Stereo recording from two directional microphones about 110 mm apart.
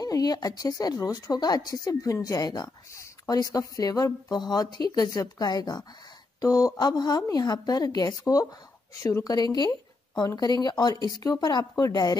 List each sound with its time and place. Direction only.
0.0 s a woman's voice: 35° left (ahead or behind)